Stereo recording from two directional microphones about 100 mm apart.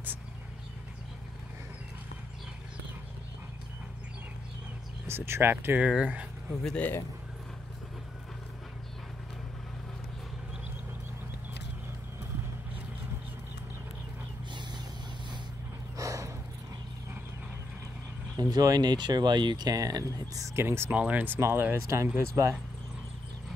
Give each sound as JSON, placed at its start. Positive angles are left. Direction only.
{"t": 5.0, "sound": "speech", "side_deg": -25}
{"t": 5.9, "sound": "speech", "side_deg": -10}
{"t": 6.6, "sound": "speech", "side_deg": 10}
{"t": 14.5, "sound": "vehicle", "side_deg": -50}
{"t": 16.0, "sound": "a sound", "side_deg": -30}
{"t": 18.3, "sound": "speech", "side_deg": -40}